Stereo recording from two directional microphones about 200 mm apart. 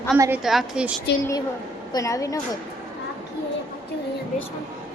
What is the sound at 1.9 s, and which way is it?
Speech, 15° left (ahead or behind).